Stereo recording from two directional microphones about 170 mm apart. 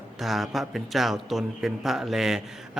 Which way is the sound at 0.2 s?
Centre (ahead or behind).